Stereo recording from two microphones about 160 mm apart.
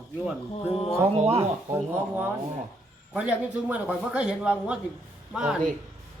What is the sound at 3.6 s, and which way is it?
Speech, 5° right (ahead or behind).